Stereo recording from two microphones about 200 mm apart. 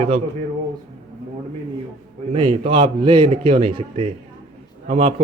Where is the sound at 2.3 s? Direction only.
25° right (ahead or behind).